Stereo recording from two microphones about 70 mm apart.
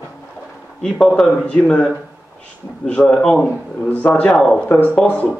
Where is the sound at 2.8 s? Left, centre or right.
Centre.